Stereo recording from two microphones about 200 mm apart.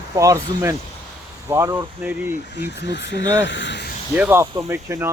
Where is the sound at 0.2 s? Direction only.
15° right (ahead or behind).